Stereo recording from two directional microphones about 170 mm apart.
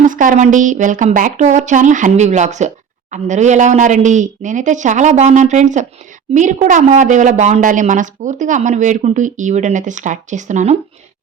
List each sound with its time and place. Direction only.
0.0 s a woman's voice: 50° right (ahead or behind)